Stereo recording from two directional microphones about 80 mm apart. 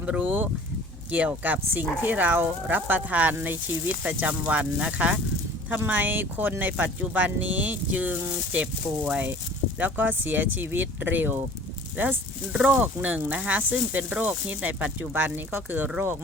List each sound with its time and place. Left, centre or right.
0.0 s speech: centre